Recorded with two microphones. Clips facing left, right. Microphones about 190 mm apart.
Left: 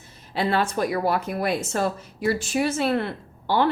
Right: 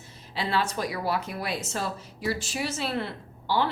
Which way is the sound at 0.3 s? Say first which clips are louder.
Left 5 dB; 50° left (ahead or behind).